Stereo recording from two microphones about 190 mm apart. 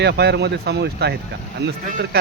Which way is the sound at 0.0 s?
60° right (ahead or behind).